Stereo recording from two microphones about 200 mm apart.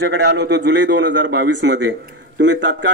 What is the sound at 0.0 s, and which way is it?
A man's voice, 55° right (ahead or behind).